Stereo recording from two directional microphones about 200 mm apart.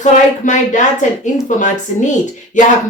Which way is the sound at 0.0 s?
40° left (ahead or behind).